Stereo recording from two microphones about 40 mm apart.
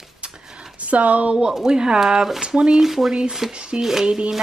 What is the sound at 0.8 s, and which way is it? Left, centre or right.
Speech, right.